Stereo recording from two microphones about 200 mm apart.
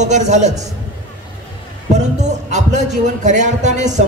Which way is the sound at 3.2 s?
40° right (ahead or behind).